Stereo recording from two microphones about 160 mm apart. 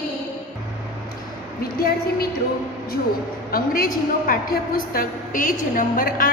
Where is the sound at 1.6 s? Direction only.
70° left (ahead or behind).